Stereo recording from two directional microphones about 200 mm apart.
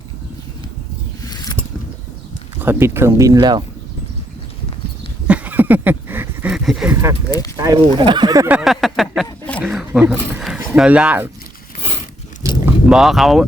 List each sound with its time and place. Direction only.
1.2 s a sound: 20° left (ahead or behind)
2.6 s speech: 10° right (ahead or behind)
5.3 s a sound: 10° right (ahead or behind)
6.9 s speech: 15° right (ahead or behind)
7.3 s speech: 20° left (ahead or behind)
7.5 s speech: 15° right (ahead or behind)
8.4 s speech: 5° right (ahead or behind)
12.6 s vehicle: centre (ahead or behind)